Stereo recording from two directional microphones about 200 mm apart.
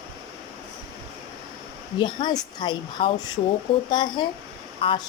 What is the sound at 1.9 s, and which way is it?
Speech, 20° left (ahead or behind).